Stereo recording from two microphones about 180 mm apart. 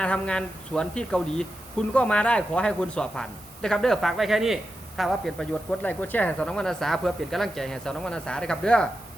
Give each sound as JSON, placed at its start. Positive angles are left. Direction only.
{"t": 0.0, "sound": "speech", "side_deg": 5}